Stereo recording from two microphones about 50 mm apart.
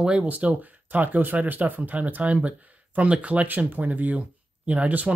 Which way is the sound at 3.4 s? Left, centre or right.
Right.